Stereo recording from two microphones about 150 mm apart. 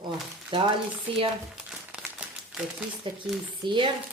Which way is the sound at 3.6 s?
30° right (ahead or behind).